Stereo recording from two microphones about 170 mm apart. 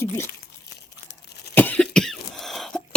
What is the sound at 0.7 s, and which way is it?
Crumpling, 70° left (ahead or behind).